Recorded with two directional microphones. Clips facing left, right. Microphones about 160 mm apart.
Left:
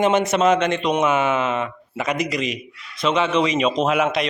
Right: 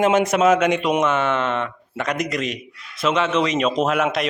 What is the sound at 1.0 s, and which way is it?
A man's voice, 10° left (ahead or behind).